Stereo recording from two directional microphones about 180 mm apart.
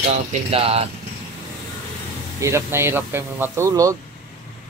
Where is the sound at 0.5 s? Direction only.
30° right (ahead or behind).